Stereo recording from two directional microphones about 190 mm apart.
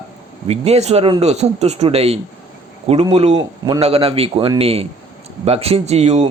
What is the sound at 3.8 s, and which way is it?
Speech, 30° right (ahead or behind).